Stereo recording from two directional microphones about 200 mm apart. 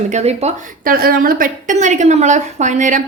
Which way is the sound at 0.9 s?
45° right (ahead or behind).